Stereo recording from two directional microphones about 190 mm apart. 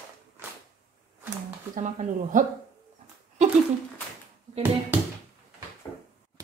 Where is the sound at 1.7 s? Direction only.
40° right (ahead or behind).